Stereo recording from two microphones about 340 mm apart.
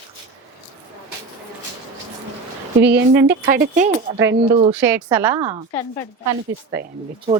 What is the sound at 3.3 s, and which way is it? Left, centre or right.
A woman's voice, right.